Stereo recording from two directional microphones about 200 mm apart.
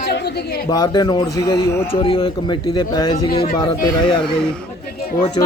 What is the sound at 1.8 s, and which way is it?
Speech, 30° left (ahead or behind).